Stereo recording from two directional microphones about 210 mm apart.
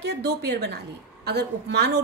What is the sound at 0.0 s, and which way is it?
A woman's voice, 50° right (ahead or behind).